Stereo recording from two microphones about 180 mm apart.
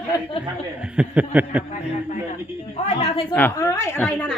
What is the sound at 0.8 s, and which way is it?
Speech, 5° right (ahead or behind).